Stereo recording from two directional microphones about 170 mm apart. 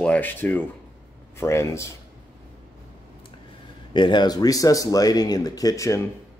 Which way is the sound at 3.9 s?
25° left (ahead or behind).